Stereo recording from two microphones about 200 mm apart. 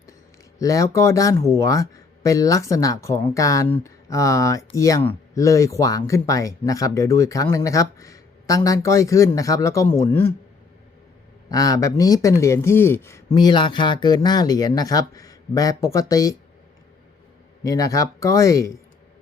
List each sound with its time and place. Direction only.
0.6 s speech: 15° left (ahead or behind)
11.5 s speech: 20° left (ahead or behind)
17.6 s speech: 15° left (ahead or behind)